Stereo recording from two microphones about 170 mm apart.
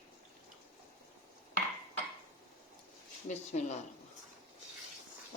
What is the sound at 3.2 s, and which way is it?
Speech, 45° left (ahead or behind).